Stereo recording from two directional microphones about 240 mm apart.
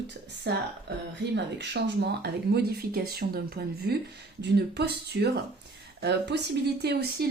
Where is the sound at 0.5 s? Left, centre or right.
Right.